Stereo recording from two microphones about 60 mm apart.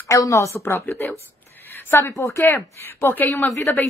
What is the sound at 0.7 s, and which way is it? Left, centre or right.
A woman's voice, left.